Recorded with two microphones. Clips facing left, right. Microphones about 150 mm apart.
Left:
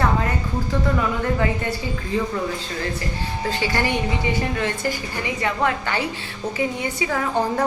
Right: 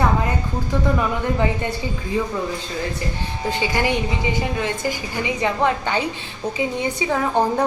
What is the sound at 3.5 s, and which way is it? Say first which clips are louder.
A woman's voice: right 2 dB; 15° right (ahead or behind).